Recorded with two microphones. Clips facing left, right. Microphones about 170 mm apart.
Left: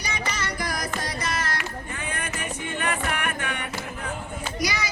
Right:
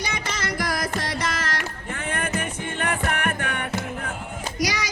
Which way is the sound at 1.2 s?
90° right.